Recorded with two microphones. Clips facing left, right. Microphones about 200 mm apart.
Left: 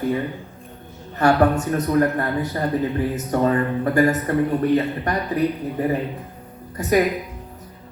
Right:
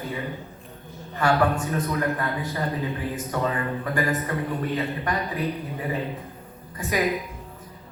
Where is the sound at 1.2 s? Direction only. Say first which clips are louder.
Left 5 dB; 40° left (ahead or behind).